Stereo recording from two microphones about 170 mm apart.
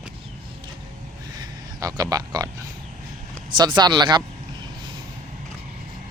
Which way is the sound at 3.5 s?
25° right (ahead or behind).